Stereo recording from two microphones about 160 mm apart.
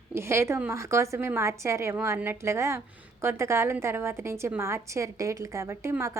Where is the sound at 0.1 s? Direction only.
15° right (ahead or behind).